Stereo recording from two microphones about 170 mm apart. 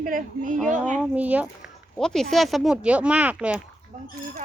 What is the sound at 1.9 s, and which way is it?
Speech, centre (ahead or behind).